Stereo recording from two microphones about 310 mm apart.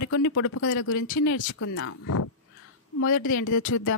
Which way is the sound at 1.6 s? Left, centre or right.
Left.